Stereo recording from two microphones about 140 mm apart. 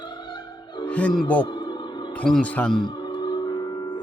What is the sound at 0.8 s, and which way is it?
Music, 10° left (ahead or behind).